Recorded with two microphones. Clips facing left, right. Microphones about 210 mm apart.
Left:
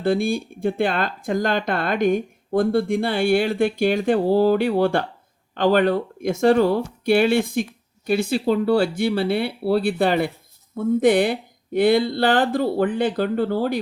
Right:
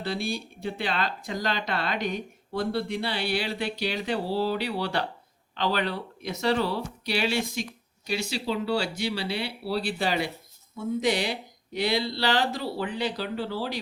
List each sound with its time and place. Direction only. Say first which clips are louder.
0.0 s speech: left 10 dB; 50° left (ahead or behind)